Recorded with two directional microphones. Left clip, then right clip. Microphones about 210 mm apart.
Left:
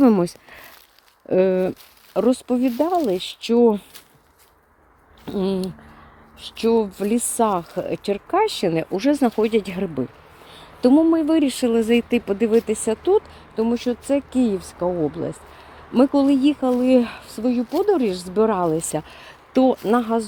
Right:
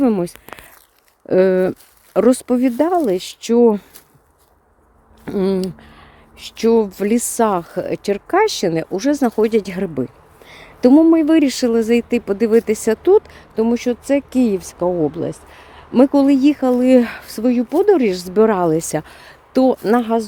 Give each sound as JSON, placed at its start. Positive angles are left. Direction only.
{"t": 0.0, "sound": "speech", "side_deg": 5}
{"t": 1.3, "sound": "speech", "side_deg": -15}
{"t": 2.1, "sound": "speech", "side_deg": -25}
{"t": 5.2, "sound": "speech", "side_deg": -25}
{"t": 10.8, "sound": "speech", "side_deg": -25}